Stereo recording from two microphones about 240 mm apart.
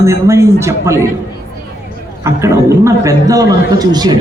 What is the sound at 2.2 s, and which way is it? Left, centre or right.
A man's voice, centre.